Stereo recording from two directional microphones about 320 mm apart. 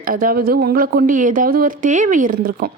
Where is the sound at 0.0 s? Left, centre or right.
Right.